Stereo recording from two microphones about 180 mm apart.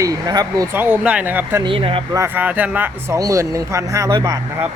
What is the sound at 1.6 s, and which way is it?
Speech, 30° right (ahead or behind).